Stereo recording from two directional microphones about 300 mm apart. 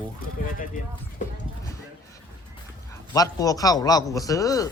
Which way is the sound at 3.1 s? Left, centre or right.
Centre.